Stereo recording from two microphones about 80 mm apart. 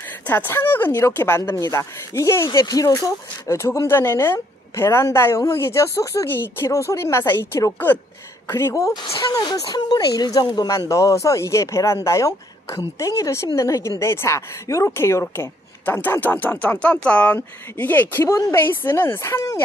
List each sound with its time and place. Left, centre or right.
0.3 s speech: left
2.6 s speech: left
9.4 s speech: left
10.9 s speech: left
18.2 s speech: left